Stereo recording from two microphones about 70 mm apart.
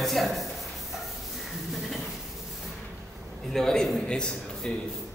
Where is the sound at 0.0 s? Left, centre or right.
Centre.